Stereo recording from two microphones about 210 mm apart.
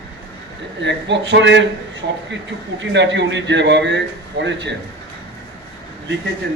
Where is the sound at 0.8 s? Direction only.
55° right (ahead or behind).